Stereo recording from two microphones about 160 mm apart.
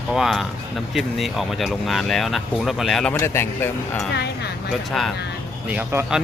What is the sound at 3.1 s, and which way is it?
Speech, 15° left (ahead or behind).